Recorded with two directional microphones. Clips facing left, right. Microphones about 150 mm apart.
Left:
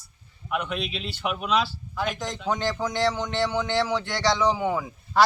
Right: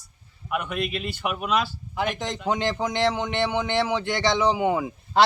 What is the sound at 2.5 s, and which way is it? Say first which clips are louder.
A man's voice: right 1 dB; 20° right (ahead or behind).